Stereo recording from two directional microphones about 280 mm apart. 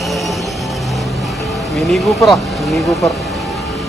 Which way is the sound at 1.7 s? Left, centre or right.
Centre.